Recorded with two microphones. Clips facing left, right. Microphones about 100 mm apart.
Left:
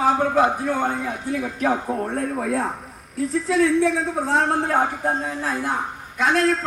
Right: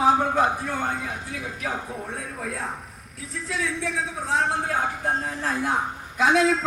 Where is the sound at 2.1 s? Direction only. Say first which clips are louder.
Left 9 dB; centre (ahead or behind).